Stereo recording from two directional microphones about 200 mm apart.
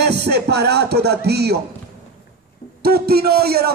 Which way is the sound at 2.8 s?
50° right (ahead or behind).